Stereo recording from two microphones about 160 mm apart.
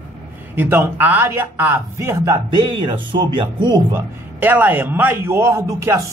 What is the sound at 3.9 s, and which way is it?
A man's voice, 10° right (ahead or behind).